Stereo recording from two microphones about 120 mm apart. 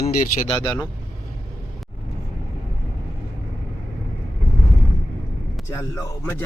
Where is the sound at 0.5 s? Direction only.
35° left (ahead or behind).